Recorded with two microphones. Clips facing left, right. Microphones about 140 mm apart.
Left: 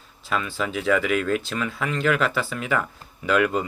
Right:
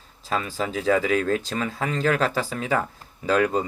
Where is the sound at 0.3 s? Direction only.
35° right (ahead or behind).